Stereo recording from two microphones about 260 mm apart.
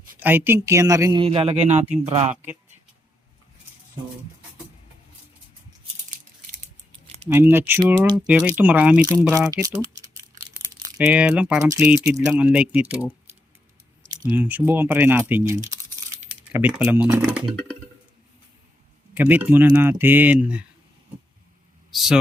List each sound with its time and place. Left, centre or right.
0.2 s a man's voice: centre
2.3 s a man's voice: centre
7.3 s a man's voice: centre
8.3 s speech: centre
14.3 s a man's voice: centre
19.1 s a man's voice: centre
21.9 s speech: centre